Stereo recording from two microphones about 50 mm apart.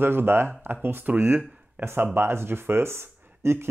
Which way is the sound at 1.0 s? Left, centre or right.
Right.